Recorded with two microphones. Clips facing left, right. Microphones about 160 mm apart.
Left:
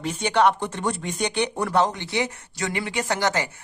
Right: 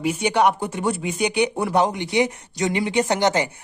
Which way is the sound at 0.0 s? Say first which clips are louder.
Right 1 dB; 10° right (ahead or behind).